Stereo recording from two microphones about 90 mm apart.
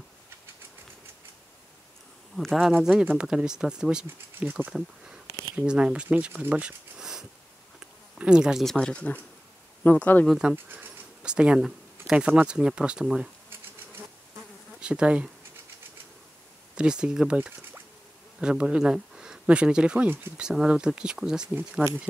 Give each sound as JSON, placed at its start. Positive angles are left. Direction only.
{"t": 2.3, "sound": "speech", "side_deg": 0}
{"t": 4.5, "sound": "speech", "side_deg": -20}
{"t": 4.7, "sound": "speech", "side_deg": -10}
{"t": 7.0, "sound": "sniff", "side_deg": -5}
{"t": 8.2, "sound": "speech", "side_deg": -10}
{"t": 8.6, "sound": "speech", "side_deg": 10}
{"t": 10.2, "sound": "speech", "side_deg": -5}
{"t": 10.5, "sound": "speech", "side_deg": -20}
{"t": 11.2, "sound": "speech", "side_deg": -10}
{"t": 14.8, "sound": "bee", "side_deg": -10}
{"t": 16.7, "sound": "speech", "side_deg": -10}
{"t": 21.8, "sound": "speech", "side_deg": -20}